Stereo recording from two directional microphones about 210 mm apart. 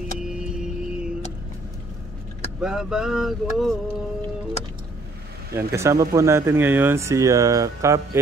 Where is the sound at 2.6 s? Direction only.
5° right (ahead or behind).